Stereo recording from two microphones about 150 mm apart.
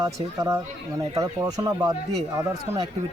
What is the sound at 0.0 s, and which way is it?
Speech, 20° right (ahead or behind).